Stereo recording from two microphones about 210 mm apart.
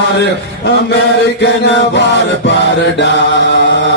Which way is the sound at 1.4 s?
55° left (ahead or behind).